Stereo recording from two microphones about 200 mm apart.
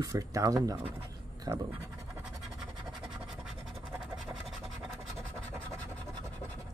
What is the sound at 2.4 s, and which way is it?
Scratch, centre (ahead or behind).